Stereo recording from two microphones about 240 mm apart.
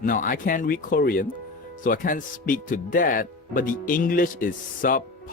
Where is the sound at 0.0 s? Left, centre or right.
Left.